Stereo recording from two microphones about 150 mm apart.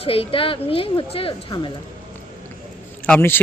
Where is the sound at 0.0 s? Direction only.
40° left (ahead or behind).